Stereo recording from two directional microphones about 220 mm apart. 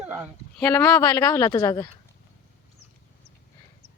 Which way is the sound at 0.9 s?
15° left (ahead or behind).